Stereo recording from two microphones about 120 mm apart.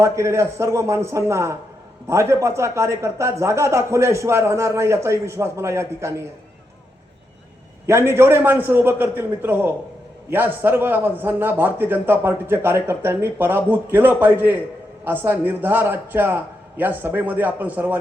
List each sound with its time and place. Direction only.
0.0 s a man's voice: 25° right (ahead or behind)
7.9 s a man's voice: 20° right (ahead or behind)